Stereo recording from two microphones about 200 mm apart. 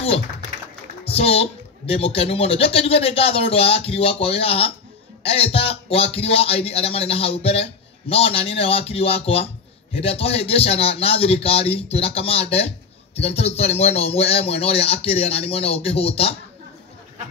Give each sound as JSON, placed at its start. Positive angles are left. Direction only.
{"t": 1.0, "sound": "a man's voice", "side_deg": 30}